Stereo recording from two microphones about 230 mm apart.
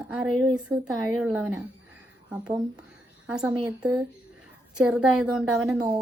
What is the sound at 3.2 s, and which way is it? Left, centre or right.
A woman's voice, centre.